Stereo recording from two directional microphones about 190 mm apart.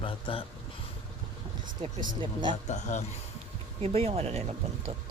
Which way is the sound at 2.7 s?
40° left (ahead or behind).